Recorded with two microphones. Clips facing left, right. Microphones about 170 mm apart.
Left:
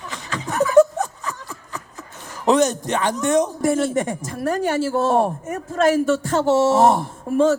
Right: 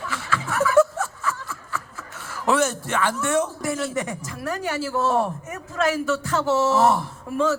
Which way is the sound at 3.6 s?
50° left (ahead or behind).